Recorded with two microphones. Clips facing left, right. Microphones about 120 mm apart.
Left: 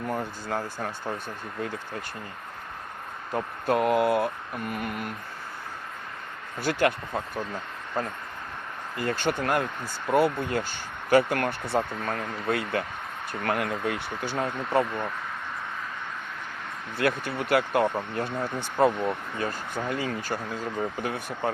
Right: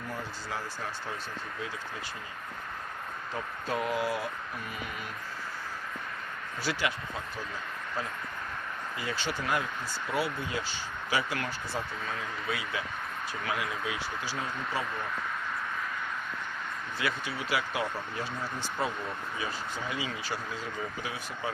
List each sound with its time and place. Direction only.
0.1 s speech: 50° left (ahead or behind)
3.3 s speech: 60° left (ahead or behind)
6.6 s speech: 55° left (ahead or behind)
8.0 s speech: 50° left (ahead or behind)
17.0 s speech: 55° left (ahead or behind)